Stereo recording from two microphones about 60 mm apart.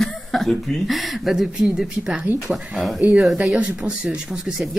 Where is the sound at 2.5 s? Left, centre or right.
Centre.